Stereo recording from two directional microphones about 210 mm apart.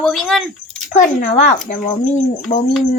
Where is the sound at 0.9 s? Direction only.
35° left (ahead or behind).